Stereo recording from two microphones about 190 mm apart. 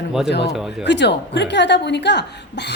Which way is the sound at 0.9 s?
65° left (ahead or behind).